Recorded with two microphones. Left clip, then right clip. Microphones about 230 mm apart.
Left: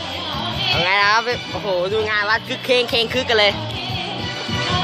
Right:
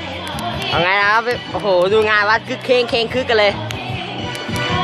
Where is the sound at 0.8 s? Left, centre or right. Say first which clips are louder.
Right 2 dB; centre.